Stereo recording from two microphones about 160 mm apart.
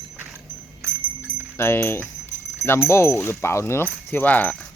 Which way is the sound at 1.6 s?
15° left (ahead or behind).